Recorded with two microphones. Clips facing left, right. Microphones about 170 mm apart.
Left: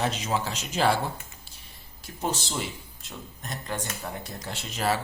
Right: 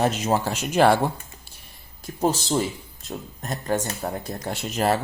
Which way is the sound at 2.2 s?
40° right (ahead or behind).